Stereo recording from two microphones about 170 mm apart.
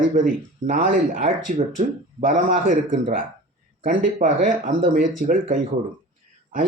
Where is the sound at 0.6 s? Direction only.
50° right (ahead or behind).